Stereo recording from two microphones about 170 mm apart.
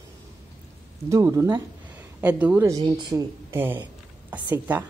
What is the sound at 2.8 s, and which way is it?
A woman's voice, 25° right (ahead or behind).